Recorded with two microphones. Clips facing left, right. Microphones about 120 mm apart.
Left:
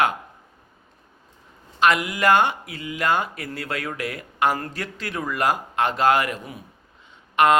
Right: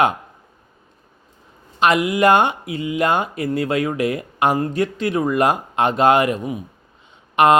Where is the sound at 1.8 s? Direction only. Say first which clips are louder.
Right 4 dB; 20° right (ahead or behind).